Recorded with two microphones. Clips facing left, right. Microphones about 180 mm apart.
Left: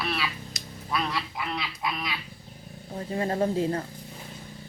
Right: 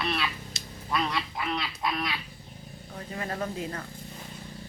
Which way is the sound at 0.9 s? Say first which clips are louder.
Even; 5° left (ahead or behind).